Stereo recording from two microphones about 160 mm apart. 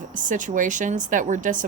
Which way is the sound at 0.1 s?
55° right (ahead or behind).